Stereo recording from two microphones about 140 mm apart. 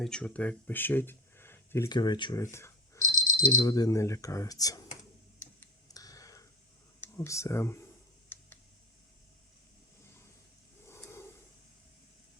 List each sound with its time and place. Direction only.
0.0 s speech: 5° left (ahead or behind)
1.9 s speech: 30° left (ahead or behind)
2.4 s speech: 20° left (ahead or behind)
5.9 s tick: 25° left (ahead or behind)
7.0 s speech: 20° left (ahead or behind)
10.8 s a sound: 20° left (ahead or behind)